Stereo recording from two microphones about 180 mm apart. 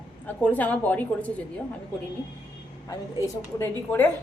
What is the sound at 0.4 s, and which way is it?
Speech, 5° left (ahead or behind).